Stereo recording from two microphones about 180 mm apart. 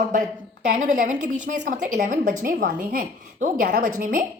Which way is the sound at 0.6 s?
45° right (ahead or behind).